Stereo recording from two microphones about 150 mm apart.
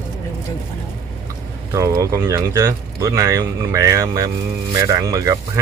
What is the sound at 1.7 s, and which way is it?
Speech, 20° right (ahead or behind).